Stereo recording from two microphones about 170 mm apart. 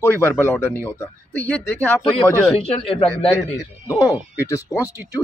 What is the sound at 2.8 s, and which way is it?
Speech, 35° left (ahead or behind).